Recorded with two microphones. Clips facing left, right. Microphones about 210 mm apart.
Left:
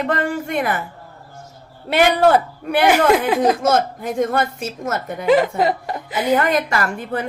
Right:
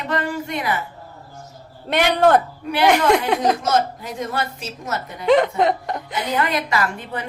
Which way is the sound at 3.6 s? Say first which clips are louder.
Left 3 dB; 50° left (ahead or behind).